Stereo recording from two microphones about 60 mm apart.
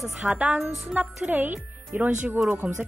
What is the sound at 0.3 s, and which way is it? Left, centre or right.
Speech, right.